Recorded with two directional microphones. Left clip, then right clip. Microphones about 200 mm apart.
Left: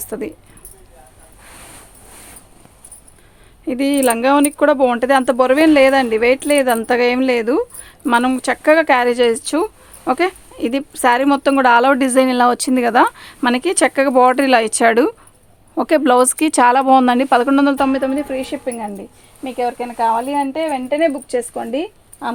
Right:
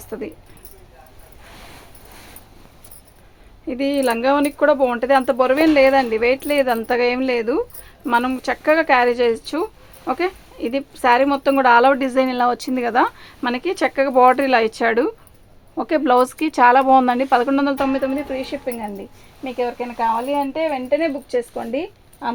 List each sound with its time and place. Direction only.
0.0 s speech: 55° left (ahead or behind)
3.7 s speech: 55° left (ahead or behind)